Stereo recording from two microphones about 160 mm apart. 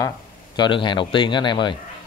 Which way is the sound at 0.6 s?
30° left (ahead or behind).